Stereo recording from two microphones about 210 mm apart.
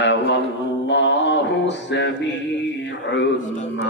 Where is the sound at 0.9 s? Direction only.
60° left (ahead or behind).